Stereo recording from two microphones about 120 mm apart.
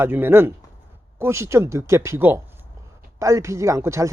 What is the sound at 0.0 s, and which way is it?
Speech, 20° right (ahead or behind).